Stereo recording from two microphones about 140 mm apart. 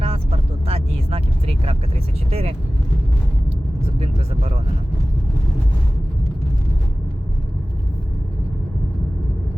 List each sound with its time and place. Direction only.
0.0 s vehicle: 45° right (ahead or behind)